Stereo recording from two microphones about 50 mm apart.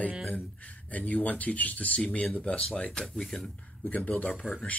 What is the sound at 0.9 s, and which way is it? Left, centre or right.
Speech, left.